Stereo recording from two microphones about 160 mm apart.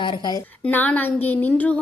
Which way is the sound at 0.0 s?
30° left (ahead or behind).